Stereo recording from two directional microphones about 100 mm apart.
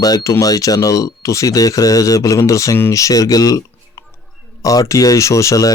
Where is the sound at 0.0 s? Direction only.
35° left (ahead or behind).